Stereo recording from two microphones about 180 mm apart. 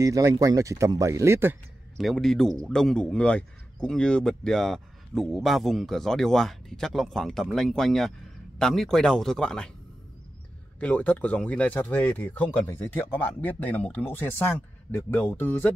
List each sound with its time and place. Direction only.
0.0 s speech: 15° right (ahead or behind)
2.0 s speech: centre (ahead or behind)
10.8 s speech: 5° left (ahead or behind)